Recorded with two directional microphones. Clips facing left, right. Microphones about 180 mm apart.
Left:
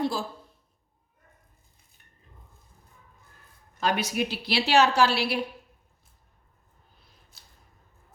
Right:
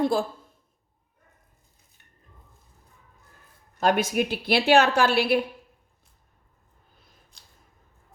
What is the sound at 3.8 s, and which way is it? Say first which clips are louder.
A woman's voice: right 4 dB; 50° right (ahead or behind).